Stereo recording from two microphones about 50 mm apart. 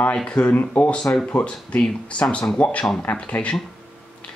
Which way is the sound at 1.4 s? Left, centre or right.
Left.